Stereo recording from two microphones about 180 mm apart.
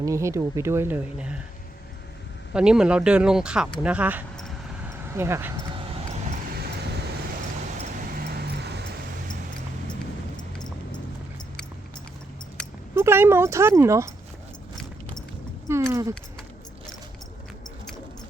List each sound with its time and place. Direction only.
0.0 s speech: 15° right (ahead or behind)
2.5 s speech: 5° right (ahead or behind)
8.1 s vehicle: 60° right (ahead or behind)
12.9 s speech: 15° right (ahead or behind)
15.7 s speech: 15° right (ahead or behind)